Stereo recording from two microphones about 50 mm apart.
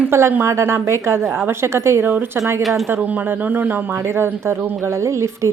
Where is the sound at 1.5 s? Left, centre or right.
Right.